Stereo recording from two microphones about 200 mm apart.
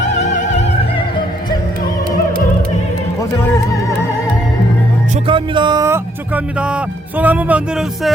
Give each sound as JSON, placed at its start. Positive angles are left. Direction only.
{"t": 0.0, "sound": "opera", "side_deg": 35}
{"t": 5.2, "sound": "speech", "side_deg": -25}